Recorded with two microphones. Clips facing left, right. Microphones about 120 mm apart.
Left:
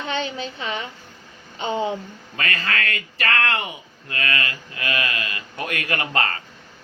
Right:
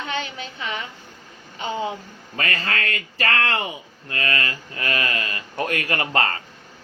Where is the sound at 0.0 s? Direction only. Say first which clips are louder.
Left 3 dB; 30° left (ahead or behind).